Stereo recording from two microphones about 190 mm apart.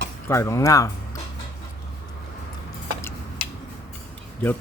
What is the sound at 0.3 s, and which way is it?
Speech, 15° left (ahead or behind).